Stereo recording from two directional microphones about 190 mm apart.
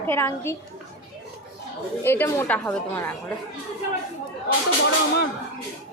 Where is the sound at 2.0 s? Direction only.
10° left (ahead or behind).